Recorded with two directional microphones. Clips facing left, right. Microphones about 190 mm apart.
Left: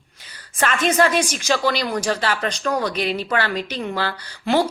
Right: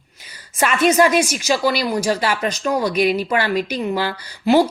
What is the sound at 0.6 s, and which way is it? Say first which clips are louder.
Speech: right 3 dB; 10° right (ahead or behind).